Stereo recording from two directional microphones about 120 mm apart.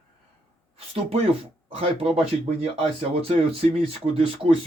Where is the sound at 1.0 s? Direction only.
60° right (ahead or behind).